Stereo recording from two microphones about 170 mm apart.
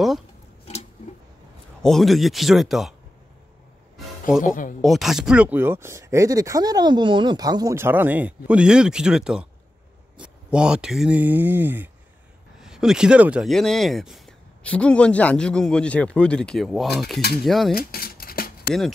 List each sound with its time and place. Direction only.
1.8 s speech: centre (ahead or behind)
4.4 s speech: 50° left (ahead or behind)
4.8 s speech: centre (ahead or behind)
17.7 s a sound: 60° left (ahead or behind)